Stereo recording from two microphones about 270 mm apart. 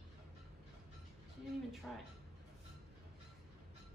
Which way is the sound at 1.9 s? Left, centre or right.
Centre.